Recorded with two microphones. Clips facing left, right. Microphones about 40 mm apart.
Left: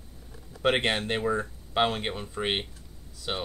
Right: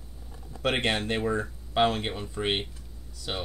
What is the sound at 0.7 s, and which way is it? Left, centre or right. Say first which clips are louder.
Speech: right 1 dB; centre.